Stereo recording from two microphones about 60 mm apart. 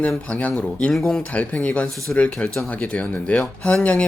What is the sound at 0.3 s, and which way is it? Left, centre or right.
Speech, left.